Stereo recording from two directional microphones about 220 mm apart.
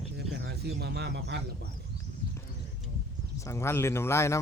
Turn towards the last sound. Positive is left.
turn(degrees=10)  # may be behind; listen again after turning